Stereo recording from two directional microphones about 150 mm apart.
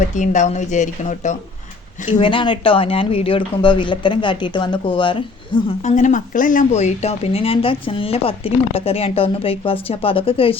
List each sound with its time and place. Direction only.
0.2 s a woman's voice: 50° left (ahead or behind)
2.0 s speech: 35° left (ahead or behind)
5.8 s speech: 55° left (ahead or behind); by 10.6 s 40° left (ahead or behind)